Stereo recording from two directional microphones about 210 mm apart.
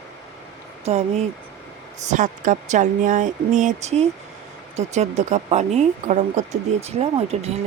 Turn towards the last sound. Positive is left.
turn(degrees=-30)  # may be behind; listen again after turning